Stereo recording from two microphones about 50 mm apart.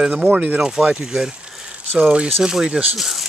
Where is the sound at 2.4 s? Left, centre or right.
Centre.